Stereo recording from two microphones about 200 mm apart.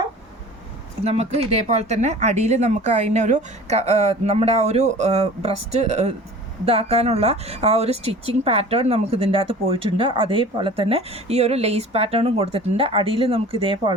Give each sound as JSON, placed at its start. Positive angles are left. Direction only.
{"t": 1.0, "sound": "speech", "side_deg": -30}